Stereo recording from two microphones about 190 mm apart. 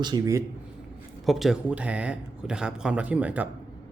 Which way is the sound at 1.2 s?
Centre (ahead or behind).